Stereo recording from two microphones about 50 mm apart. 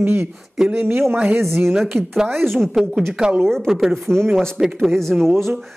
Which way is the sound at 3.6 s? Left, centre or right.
Centre.